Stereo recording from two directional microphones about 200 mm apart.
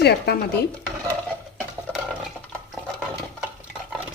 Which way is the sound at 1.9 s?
10° left (ahead or behind).